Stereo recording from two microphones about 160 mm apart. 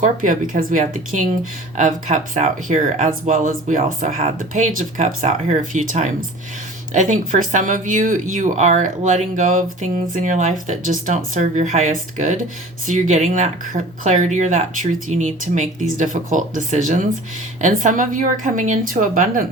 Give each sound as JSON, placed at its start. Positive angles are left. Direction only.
{"t": 0.0, "sound": "a woman's voice", "side_deg": -55}